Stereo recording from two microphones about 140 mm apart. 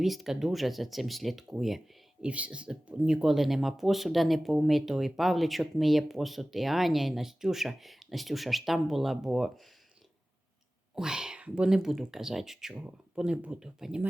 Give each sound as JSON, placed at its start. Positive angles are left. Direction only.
{"t": 0.0, "sound": "speech", "side_deg": 0}
{"t": 10.9, "sound": "speech", "side_deg": -5}